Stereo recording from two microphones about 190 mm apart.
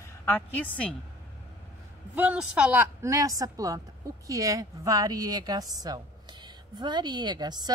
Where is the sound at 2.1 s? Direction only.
5° right (ahead or behind).